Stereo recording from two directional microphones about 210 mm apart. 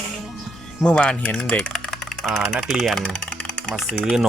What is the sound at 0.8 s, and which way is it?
Speech, 5° left (ahead or behind).